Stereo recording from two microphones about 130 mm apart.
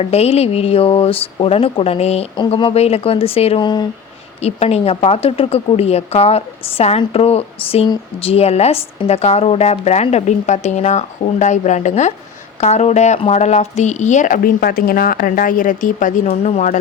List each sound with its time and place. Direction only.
0.0 s a woman's voice: 50° left (ahead or behind)
2.4 s a woman's voice: 40° left (ahead or behind)
3.6 s speech: 35° left (ahead or behind)
4.4 s a woman's voice: 55° left (ahead or behind)